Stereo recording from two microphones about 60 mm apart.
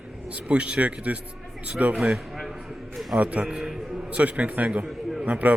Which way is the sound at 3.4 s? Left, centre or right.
Centre.